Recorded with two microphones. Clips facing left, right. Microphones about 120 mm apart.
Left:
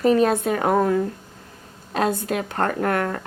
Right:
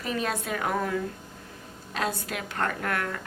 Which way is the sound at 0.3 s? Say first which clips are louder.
Left 9 dB; 35° left (ahead or behind).